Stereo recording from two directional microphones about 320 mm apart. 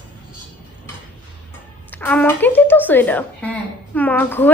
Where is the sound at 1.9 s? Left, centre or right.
Centre.